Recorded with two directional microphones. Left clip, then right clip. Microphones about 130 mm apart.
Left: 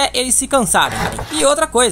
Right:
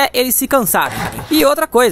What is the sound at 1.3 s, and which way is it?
Speech, 55° right (ahead or behind).